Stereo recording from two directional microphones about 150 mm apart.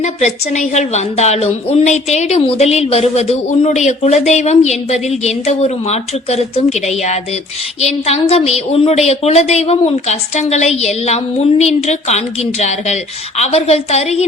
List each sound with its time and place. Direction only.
0.0 s a woman's voice: 50° left (ahead or behind)